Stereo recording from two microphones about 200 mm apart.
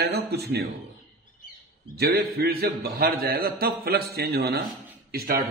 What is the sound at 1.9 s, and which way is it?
A man's voice, 50° right (ahead or behind).